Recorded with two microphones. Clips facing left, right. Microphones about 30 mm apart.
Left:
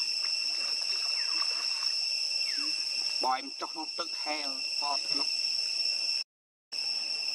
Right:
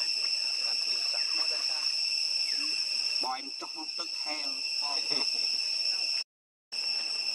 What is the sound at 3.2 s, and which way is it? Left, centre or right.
Speech, centre.